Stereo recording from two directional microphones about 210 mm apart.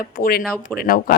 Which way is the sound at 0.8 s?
45° left (ahead or behind).